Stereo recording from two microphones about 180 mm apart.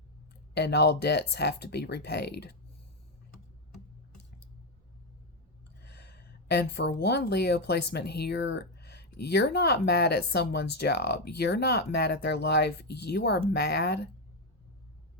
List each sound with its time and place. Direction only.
0.5 s speech: 65° left (ahead or behind)
5.8 s speech: 65° left (ahead or behind)